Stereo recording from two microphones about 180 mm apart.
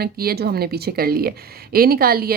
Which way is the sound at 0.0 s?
60° right (ahead or behind).